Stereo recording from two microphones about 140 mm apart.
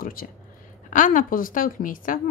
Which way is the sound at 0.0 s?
90° left.